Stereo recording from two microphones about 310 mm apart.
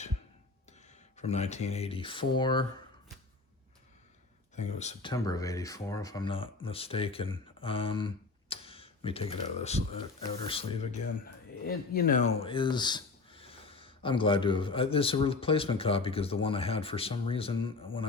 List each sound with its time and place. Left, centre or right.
1.1 s speech: left
4.5 s speech: left
5.1 s speech: centre
11.6 s speech: left
12.4 s speech: centre